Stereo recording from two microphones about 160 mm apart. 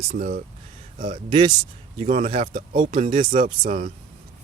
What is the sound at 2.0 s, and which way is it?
Speech, 55° right (ahead or behind).